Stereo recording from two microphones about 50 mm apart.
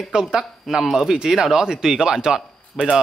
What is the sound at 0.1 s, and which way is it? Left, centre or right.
A man's voice, centre.